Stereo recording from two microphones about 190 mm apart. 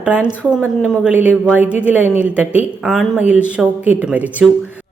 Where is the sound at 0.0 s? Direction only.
5° right (ahead or behind).